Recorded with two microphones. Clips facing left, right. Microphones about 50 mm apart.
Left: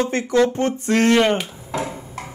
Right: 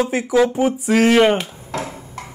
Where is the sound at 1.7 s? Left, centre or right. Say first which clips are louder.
Left 1 dB; centre.